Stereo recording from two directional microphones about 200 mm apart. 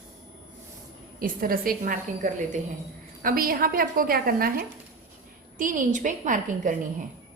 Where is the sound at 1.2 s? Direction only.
45° right (ahead or behind).